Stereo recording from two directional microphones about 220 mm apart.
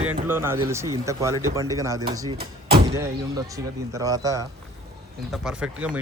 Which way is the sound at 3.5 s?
15° right (ahead or behind).